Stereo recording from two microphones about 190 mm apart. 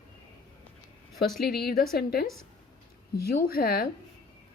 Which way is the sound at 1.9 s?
55° left (ahead or behind).